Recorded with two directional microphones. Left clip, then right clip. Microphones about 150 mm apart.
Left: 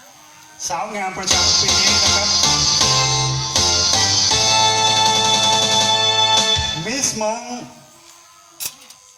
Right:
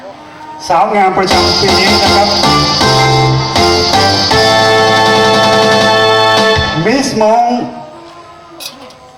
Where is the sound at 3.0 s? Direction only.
20° right (ahead or behind).